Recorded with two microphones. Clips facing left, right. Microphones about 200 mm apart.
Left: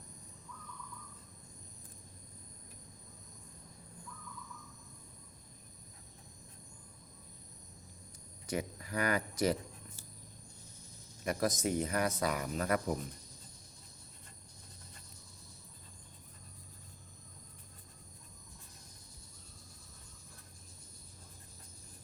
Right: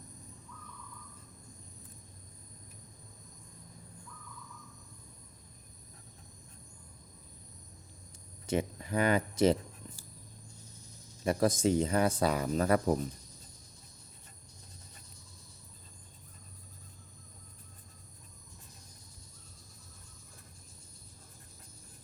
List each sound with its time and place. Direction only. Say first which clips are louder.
8.4 s speech: right 6 dB; 25° right (ahead or behind)
11.2 s speech: right 5 dB; 30° right (ahead or behind)